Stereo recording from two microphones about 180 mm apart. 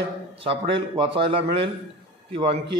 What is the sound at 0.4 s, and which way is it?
Speech, 30° right (ahead or behind).